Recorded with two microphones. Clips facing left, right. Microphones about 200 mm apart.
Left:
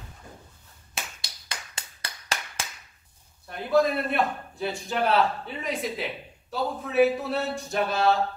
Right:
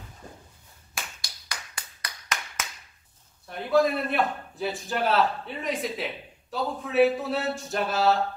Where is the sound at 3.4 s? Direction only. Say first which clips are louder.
Even; centre (ahead or behind).